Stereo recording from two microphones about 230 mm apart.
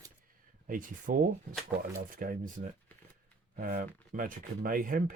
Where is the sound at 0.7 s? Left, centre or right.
Right.